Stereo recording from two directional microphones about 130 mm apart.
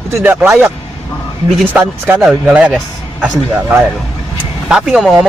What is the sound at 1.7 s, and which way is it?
A man's voice, 10° right (ahead or behind).